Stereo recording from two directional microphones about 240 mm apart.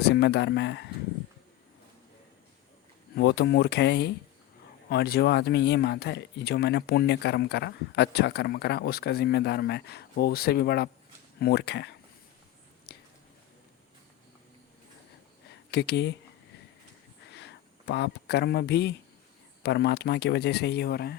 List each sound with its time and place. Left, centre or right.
0.0 s speech: left
3.2 s speech: left
12.9 s a sound: left
15.7 s speech: left
17.3 s speech: left